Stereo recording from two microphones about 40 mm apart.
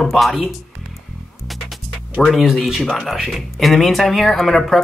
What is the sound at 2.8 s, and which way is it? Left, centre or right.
Speech, centre.